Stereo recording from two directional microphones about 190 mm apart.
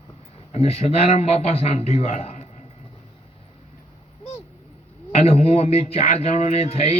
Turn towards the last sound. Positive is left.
turn(degrees=30)  # may be behind; listen again after turning